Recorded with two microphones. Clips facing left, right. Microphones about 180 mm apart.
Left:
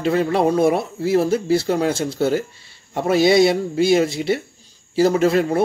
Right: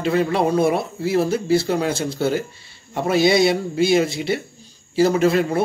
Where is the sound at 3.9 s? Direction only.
45° left (ahead or behind).